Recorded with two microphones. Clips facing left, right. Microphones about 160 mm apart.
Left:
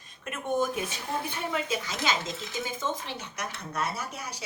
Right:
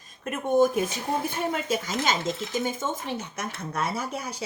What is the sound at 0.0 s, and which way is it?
Speech, 40° right (ahead or behind).